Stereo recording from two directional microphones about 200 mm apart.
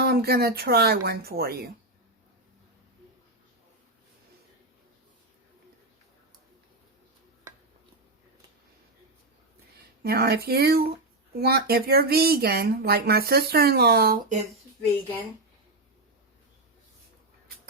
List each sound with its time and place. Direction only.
0.0 s speech: 50° right (ahead or behind)
10.0 s speech: 50° right (ahead or behind)